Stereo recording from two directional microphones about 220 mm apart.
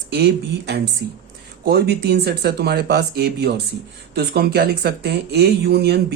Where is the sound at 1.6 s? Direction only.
50° right (ahead or behind).